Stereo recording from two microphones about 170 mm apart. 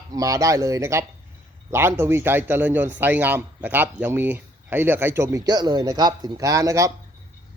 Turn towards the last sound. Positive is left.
turn(degrees=-20)  # may be behind; listen again after turning